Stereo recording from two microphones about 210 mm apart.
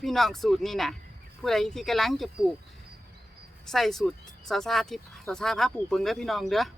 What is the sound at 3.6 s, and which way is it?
Speech, centre (ahead or behind).